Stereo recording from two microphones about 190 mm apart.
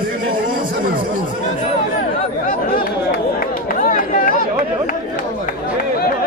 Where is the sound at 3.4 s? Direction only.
45° left (ahead or behind).